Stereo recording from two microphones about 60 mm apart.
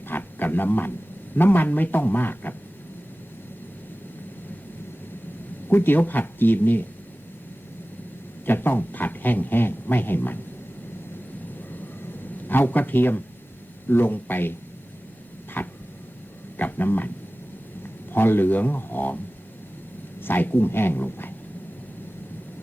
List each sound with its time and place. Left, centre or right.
0.1 s a sound: left
1.4 s speech: left
5.6 s speech: left
8.4 s speech: left
12.5 s speech: left
15.6 s a sound: left
16.6 s dog: left
17.8 s a man's voice: left
20.2 s speech: left